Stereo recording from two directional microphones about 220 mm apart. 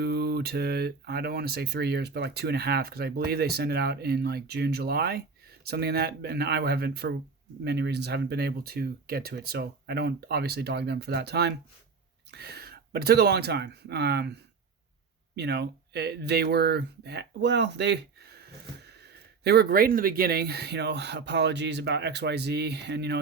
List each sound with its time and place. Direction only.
0.0 s speech: 50° right (ahead or behind)
19.5 s speech: 45° right (ahead or behind)